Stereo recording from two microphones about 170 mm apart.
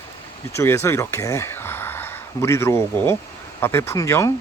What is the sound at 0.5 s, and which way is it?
Speech, 15° left (ahead or behind).